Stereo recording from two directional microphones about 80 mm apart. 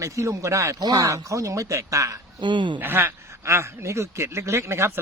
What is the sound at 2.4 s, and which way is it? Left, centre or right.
Speech, right.